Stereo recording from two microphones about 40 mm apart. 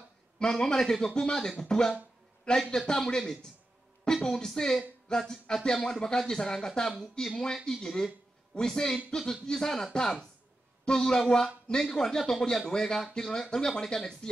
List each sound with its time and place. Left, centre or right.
0.4 s a woman's voice: centre
10.9 s speech: centre